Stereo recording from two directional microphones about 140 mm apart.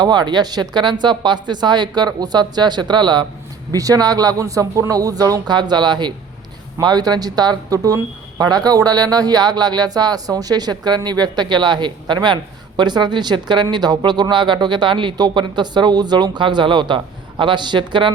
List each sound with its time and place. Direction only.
0.0 s speech: 30° right (ahead or behind)